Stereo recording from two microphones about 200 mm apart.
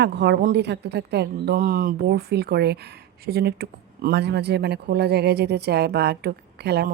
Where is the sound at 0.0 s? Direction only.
55° right (ahead or behind).